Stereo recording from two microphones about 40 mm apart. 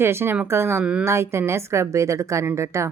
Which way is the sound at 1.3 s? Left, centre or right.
Right.